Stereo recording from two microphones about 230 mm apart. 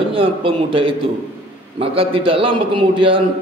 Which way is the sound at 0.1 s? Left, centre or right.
Right.